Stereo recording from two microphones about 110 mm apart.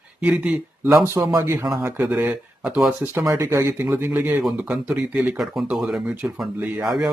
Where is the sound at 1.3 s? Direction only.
25° right (ahead or behind).